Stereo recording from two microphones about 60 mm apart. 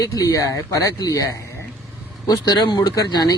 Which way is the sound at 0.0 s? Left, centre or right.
Left.